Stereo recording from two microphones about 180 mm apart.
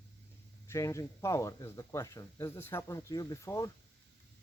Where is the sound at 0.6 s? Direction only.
15° left (ahead or behind).